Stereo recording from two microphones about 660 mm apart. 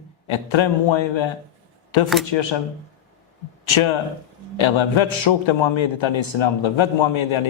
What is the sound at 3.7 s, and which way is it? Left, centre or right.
A man's voice, left.